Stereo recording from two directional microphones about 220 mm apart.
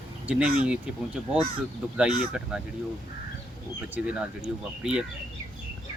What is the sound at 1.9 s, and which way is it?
Speech, 5° right (ahead or behind).